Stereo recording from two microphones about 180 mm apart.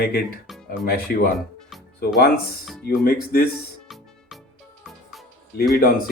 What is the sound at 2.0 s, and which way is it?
Speech, 60° left (ahead or behind).